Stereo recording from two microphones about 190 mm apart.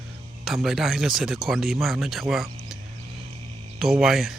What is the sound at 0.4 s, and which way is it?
Speech, centre (ahead or behind).